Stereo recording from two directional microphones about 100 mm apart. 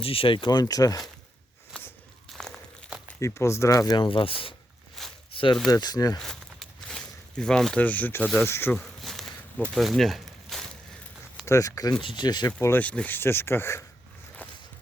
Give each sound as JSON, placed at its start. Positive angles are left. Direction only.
{"t": 0.0, "sound": "speech", "side_deg": 65}
{"t": 1.7, "sound": "biting", "side_deg": 10}
{"t": 2.3, "sound": "walk", "side_deg": 5}
{"t": 3.2, "sound": "speech", "side_deg": 30}
{"t": 3.9, "sound": "speech", "side_deg": 55}
{"t": 5.0, "sound": "a sound", "side_deg": 0}
{"t": 5.3, "sound": "a sound", "side_deg": 60}
{"t": 5.6, "sound": "speech", "side_deg": 40}
{"t": 6.1, "sound": "a sound", "side_deg": 5}
{"t": 8.4, "sound": "speech", "side_deg": 25}
{"t": 8.7, "sound": "a sound", "side_deg": 5}
{"t": 11.4, "sound": "speech", "side_deg": 30}
{"t": 12.0, "sound": "speech", "side_deg": 45}
{"t": 12.5, "sound": "speech", "side_deg": 25}